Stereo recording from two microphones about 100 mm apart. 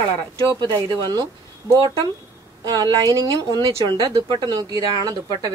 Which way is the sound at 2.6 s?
40° right (ahead or behind).